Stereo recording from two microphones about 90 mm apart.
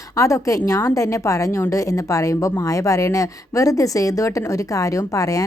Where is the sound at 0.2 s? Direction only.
35° left (ahead or behind).